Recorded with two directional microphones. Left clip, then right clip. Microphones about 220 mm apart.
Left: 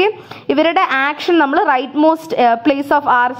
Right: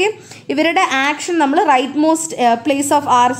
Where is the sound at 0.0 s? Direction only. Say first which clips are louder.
Left 2 dB; 15° left (ahead or behind).